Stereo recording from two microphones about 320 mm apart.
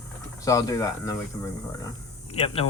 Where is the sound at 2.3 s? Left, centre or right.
Centre.